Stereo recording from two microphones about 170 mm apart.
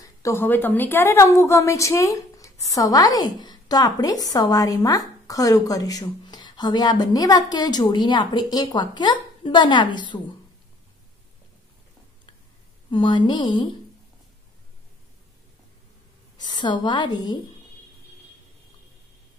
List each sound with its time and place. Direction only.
0.0 s a woman's voice: 15° left (ahead or behind)
12.9 s a woman's voice: 30° left (ahead or behind)
16.6 s a woman's voice: 25° left (ahead or behind)